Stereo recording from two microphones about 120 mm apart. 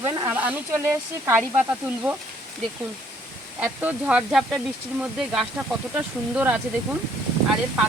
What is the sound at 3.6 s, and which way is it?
Speech, 15° right (ahead or behind).